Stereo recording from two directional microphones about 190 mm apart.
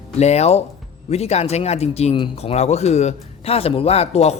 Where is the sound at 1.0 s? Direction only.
35° left (ahead or behind).